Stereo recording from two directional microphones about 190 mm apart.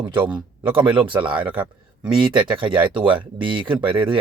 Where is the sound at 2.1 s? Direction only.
25° right (ahead or behind).